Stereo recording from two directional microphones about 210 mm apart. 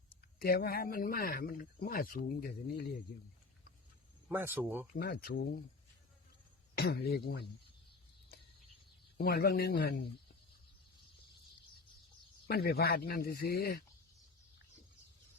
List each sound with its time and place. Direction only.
0.3 s speech: 45° left (ahead or behind)
4.3 s speech: 10° right (ahead or behind)
4.9 s speech: 50° left (ahead or behind)
6.7 s speech: 50° left (ahead or behind)
9.1 s speech: 50° left (ahead or behind)
12.5 s speech: 50° left (ahead or behind)